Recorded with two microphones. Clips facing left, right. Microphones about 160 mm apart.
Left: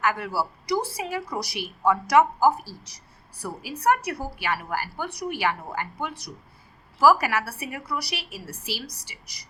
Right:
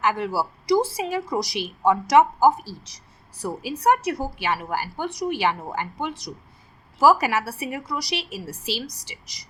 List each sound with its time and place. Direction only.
0.0 s a woman's voice: 25° right (ahead or behind)